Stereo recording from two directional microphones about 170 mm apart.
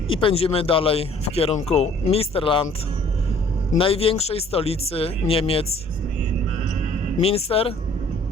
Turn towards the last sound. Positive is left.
turn(degrees=35)  # may be behind; listen again after turning